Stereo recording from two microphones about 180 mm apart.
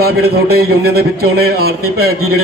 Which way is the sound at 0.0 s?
60° right (ahead or behind).